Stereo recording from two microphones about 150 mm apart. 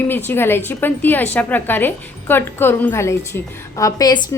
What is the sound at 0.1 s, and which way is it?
A woman's voice, 15° left (ahead or behind).